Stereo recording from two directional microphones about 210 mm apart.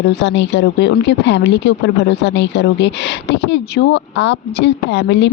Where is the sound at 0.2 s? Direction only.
55° left (ahead or behind).